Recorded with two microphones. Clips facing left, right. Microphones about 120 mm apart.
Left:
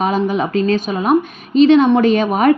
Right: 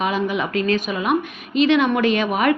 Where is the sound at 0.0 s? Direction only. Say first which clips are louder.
Left 5 dB; 35° left (ahead or behind).